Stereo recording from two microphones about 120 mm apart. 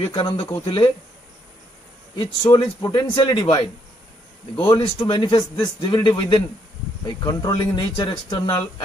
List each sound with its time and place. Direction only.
0.0 s a man's voice: 40° left (ahead or behind)
2.1 s a man's voice: 35° left (ahead or behind)
4.6 s a man's voice: 35° left (ahead or behind)